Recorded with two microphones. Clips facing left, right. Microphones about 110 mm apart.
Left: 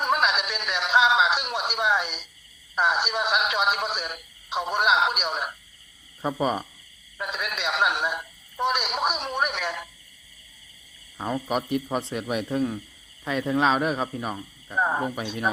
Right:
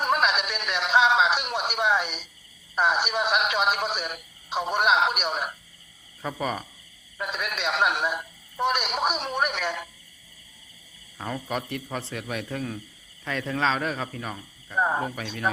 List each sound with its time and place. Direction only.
0.0 s a sound: centre (ahead or behind)
2.7 s speech: centre (ahead or behind)
6.2 s a man's voice: 20° left (ahead or behind)
7.2 s a man's voice: centre (ahead or behind)
11.2 s a man's voice: 20° left (ahead or behind)
14.8 s speech: centre (ahead or behind)
15.0 s a man's voice: 20° left (ahead or behind)